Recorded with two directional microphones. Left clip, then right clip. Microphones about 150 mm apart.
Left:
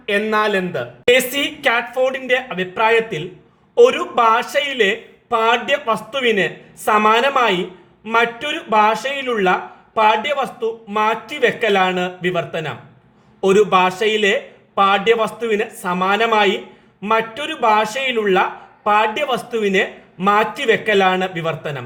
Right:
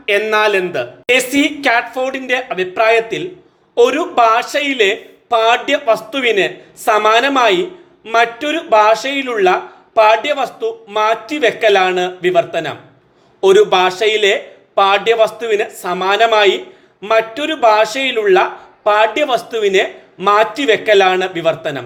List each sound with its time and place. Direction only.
0.0 s speech: 35° right (ahead or behind)